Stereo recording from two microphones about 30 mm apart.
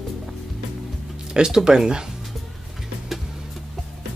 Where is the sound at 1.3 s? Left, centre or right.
Right.